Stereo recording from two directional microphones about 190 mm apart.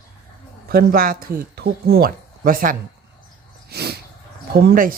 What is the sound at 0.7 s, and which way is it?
Speech, 50° right (ahead or behind).